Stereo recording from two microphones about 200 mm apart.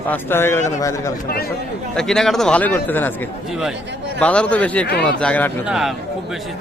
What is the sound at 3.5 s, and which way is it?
A man's voice, centre (ahead or behind).